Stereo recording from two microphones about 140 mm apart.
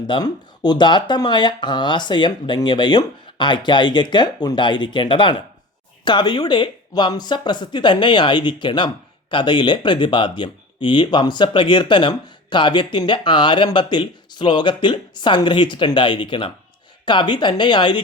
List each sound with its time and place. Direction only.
0.1 s speech: 30° left (ahead or behind)